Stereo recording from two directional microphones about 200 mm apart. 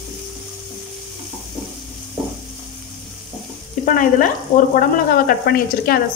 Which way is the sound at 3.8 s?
45° left (ahead or behind).